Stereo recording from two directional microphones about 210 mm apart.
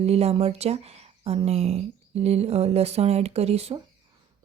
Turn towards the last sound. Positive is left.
turn(degrees=-30)  # may be behind; listen again after turning